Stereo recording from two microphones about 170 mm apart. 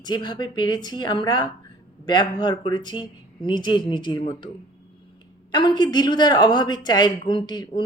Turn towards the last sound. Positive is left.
turn(degrees=25)  # may be behind; listen again after turning